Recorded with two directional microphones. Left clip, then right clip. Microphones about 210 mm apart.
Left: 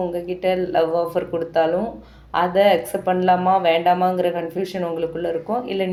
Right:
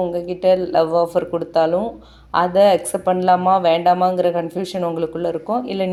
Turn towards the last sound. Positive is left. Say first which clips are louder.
# right 2 dB
turn(degrees=-35)  # may be behind; listen again after turning